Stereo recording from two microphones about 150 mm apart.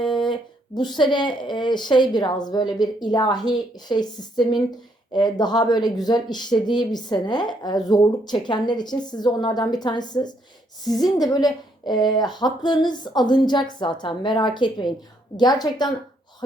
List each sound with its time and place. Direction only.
0.0 s speech: 30° left (ahead or behind)